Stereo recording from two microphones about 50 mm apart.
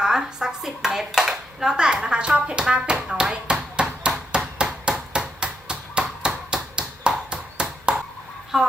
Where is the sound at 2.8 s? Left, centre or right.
Centre.